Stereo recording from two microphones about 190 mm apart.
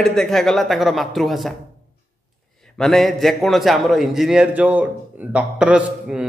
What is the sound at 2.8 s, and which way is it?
A man's voice, centre (ahead or behind).